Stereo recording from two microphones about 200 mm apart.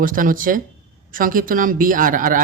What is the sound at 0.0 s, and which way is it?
Speech, 45° right (ahead or behind).